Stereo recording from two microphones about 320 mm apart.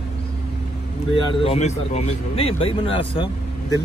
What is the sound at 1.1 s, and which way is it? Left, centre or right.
Speech, centre.